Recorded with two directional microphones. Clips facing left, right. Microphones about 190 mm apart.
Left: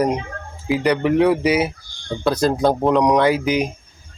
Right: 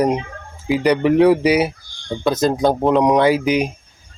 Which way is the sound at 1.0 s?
10° right (ahead or behind).